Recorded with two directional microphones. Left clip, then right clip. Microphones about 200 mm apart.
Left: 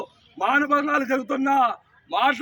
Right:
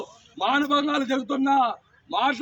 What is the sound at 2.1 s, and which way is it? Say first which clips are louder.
Speech: left 3 dB; 25° left (ahead or behind).